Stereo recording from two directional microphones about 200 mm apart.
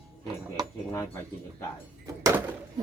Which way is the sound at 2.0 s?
15° right (ahead or behind).